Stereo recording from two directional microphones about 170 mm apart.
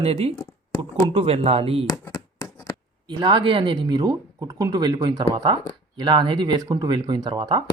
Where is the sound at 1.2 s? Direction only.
35° right (ahead or behind).